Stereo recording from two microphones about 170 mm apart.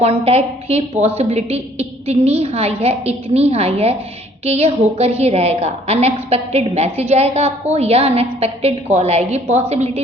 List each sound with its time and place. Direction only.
0.0 s a woman's voice: 35° right (ahead or behind)